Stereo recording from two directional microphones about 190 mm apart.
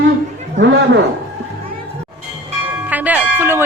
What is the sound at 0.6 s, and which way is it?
Speech, 35° right (ahead or behind).